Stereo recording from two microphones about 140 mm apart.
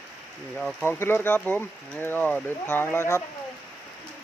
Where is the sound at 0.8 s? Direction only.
15° left (ahead or behind).